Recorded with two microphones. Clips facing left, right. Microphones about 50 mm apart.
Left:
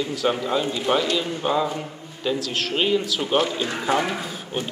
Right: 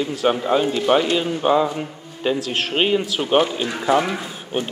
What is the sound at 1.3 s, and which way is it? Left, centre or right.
Speech, centre.